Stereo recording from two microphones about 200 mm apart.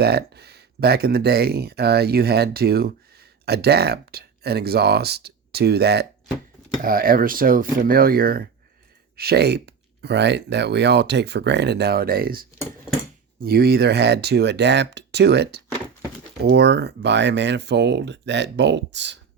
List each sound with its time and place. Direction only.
0.0 s speech: 55° right (ahead or behind)